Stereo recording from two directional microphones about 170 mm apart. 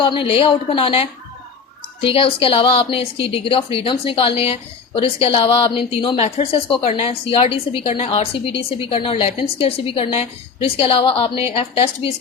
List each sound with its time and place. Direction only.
0.0 s a woman's voice: 30° left (ahead or behind)